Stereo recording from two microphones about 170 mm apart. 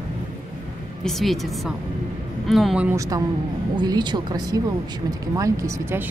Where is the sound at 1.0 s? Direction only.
Centre (ahead or behind).